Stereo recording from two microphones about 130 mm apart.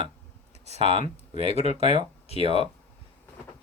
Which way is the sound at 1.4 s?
50° right (ahead or behind).